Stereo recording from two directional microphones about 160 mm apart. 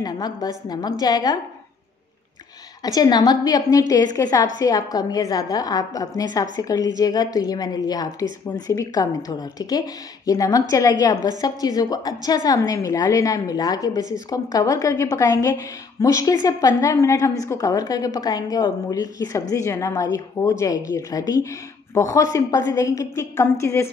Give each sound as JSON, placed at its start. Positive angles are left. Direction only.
{"t": 0.0, "sound": "a woman's voice", "side_deg": 25}
{"t": 2.8, "sound": "a woman's voice", "side_deg": 25}